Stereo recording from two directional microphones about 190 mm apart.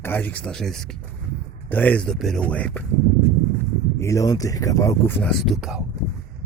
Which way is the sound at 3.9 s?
15° left (ahead or behind).